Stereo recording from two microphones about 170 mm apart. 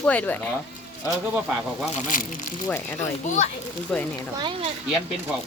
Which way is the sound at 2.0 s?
50° left (ahead or behind).